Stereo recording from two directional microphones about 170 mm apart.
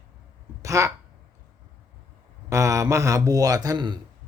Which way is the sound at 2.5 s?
20° right (ahead or behind).